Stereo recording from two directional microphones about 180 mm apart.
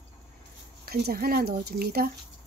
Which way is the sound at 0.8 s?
55° right (ahead or behind).